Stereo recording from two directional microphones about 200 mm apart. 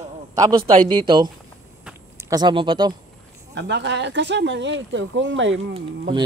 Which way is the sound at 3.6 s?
60° right (ahead or behind).